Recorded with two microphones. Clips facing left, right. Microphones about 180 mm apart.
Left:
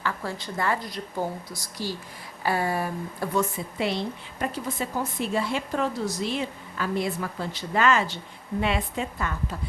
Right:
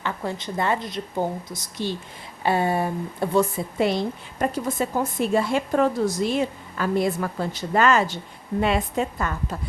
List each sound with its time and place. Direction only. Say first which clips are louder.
0.0 s speech: right 2 dB; 20° right (ahead or behind)
3.8 s a woman's voice: right 5 dB; 45° right (ahead or behind)